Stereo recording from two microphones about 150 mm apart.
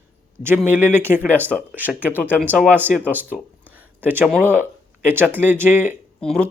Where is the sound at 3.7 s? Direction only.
10° right (ahead or behind).